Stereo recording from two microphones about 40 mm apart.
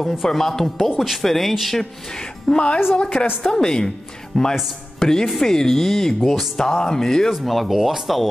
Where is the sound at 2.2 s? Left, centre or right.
Left.